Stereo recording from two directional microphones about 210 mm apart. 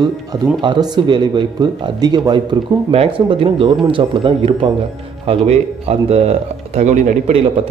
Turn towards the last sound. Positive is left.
turn(degrees=-30)  # may be behind; listen again after turning